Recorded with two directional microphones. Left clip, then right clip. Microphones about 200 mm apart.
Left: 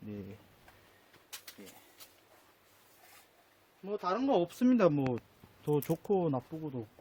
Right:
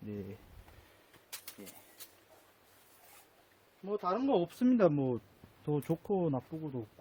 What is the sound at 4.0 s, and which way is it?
Speech, 15° left (ahead or behind).